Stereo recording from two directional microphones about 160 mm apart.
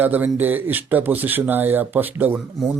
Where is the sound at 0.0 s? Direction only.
10° right (ahead or behind).